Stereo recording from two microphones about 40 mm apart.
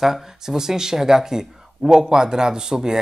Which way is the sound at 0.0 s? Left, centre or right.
Centre.